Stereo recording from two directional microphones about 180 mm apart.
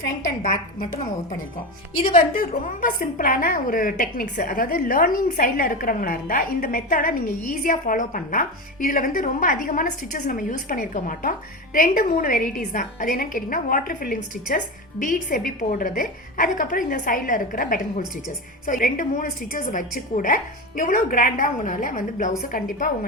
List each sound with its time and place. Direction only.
0.4 s a woman's voice: 45° left (ahead or behind)